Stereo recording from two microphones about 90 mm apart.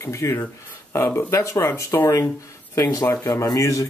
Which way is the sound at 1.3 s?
30° left (ahead or behind).